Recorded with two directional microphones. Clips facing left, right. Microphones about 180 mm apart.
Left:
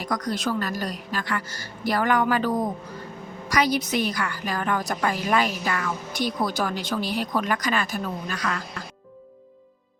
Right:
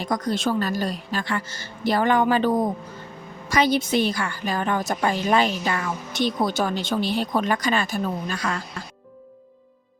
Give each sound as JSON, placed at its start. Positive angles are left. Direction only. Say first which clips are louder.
{"t": 0.0, "sound": "a woman's voice", "louder": "right 3 dB", "side_deg": -25}